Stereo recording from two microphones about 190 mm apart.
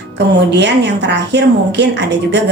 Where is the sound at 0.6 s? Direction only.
65° right (ahead or behind).